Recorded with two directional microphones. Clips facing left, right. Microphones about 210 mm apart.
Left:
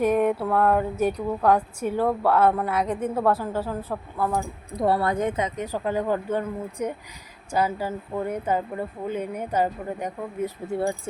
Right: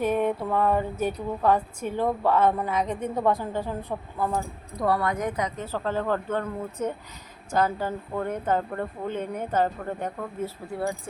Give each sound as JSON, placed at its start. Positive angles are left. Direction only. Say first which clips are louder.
{"t": 0.0, "sound": "a woman's voice", "louder": "left 3 dB", "side_deg": 10}
{"t": 4.2, "sound": "speech", "louder": "left 2 dB", "side_deg": -15}
{"t": 4.8, "sound": "speech", "louder": "left 3 dB", "side_deg": 30}
{"t": 10.7, "sound": "speech", "louder": "left 5 dB", "side_deg": 25}